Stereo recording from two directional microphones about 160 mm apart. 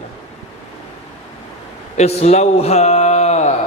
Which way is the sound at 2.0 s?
45° left (ahead or behind).